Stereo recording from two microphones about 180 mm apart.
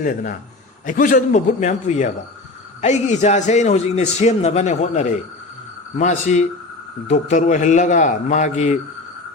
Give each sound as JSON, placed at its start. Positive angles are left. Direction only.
{"t": 0.9, "sound": "a man's voice", "side_deg": 45}